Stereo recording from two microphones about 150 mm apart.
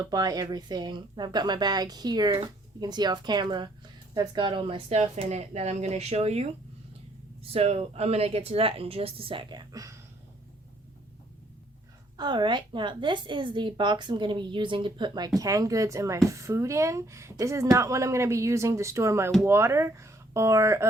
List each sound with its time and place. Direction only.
0.1 s speech: 25° right (ahead or behind); by 6.5 s 45° right (ahead or behind)
7.5 s a woman's voice: 45° right (ahead or behind); by 9.9 s 25° right (ahead or behind)
12.1 s a woman's voice: 30° right (ahead or behind)